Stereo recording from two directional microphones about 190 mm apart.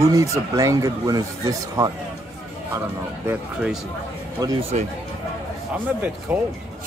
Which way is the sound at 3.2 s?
5° right (ahead or behind).